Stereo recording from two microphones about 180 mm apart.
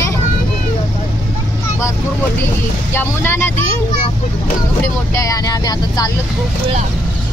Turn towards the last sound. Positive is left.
turn(degrees=20)  # may be behind; listen again after turning